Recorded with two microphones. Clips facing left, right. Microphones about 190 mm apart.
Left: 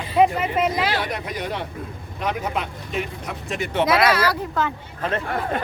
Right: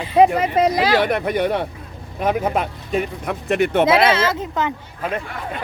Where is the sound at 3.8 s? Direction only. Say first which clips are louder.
Left 1 dB; 25° right (ahead or behind).